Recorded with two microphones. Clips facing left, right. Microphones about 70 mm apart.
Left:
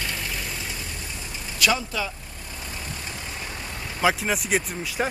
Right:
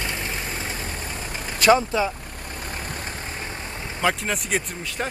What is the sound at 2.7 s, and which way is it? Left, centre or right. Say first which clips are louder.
Vehicle: right 3 dB; right.